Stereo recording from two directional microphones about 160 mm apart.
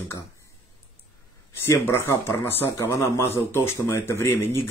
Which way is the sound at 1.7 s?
15° left (ahead or behind).